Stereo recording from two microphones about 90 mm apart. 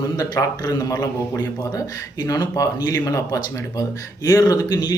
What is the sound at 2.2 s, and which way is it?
Speech, 40° left (ahead or behind).